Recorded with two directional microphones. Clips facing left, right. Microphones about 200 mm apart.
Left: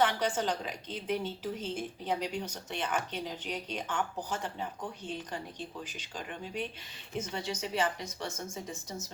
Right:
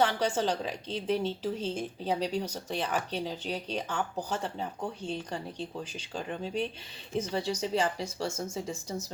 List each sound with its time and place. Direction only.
0.0 s a woman's voice: 30° right (ahead or behind)